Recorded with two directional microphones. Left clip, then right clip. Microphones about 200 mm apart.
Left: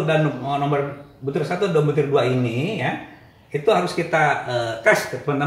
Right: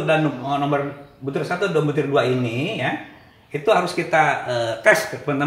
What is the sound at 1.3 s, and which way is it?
Speech, 35° right (ahead or behind).